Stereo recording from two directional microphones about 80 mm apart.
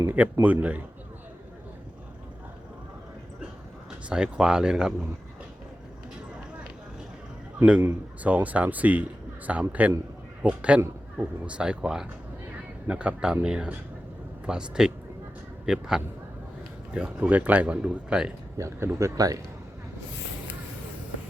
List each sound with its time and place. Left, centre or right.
0.0 s speech: right
4.1 s speech: centre
8.2 s speech: centre
18.5 s a man's voice: right